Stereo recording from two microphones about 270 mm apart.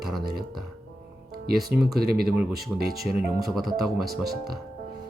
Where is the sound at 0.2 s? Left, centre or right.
Right.